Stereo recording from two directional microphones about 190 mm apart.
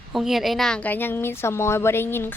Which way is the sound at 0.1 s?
Centre (ahead or behind).